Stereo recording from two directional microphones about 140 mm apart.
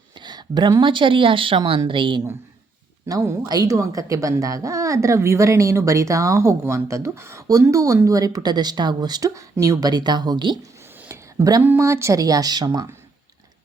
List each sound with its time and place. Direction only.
0.2 s speech: 30° right (ahead or behind)
3.1 s speech: 25° right (ahead or behind)
11.1 s a sound: 20° right (ahead or behind)
11.6 s speech: 15° right (ahead or behind)